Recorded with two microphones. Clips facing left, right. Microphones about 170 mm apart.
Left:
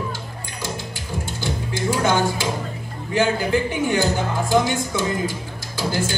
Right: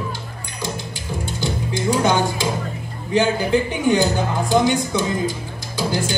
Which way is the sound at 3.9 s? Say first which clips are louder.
Right 8 dB; 20° right (ahead or behind).